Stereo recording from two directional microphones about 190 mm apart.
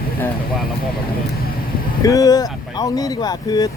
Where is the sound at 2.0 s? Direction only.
20° left (ahead or behind).